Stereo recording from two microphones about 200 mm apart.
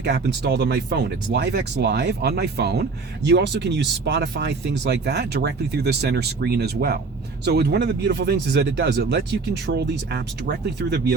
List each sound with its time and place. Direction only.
0.0 s speech: 60° right (ahead or behind)